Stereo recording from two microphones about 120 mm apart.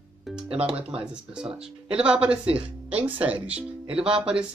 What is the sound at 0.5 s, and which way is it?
Speech, 50° right (ahead or behind).